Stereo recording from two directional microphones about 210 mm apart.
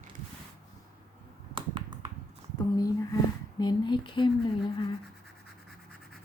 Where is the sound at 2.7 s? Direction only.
15° left (ahead or behind).